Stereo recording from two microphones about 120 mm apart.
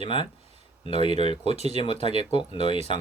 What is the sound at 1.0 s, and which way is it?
Speech, 60° right (ahead or behind).